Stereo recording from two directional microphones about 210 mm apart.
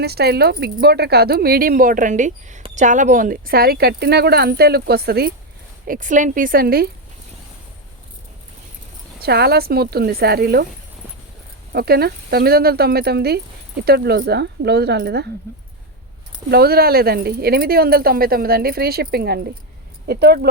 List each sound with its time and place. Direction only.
0.0 s a woman's voice: 50° right (ahead or behind)
9.2 s speech: 50° right (ahead or behind)
11.7 s speech: 50° right (ahead or behind)
16.5 s speech: 50° right (ahead or behind)